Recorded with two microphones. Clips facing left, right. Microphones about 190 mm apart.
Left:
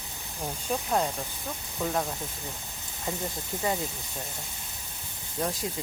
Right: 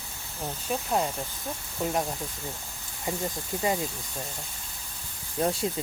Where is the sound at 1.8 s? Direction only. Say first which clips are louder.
Right 1 dB; 15° right (ahead or behind).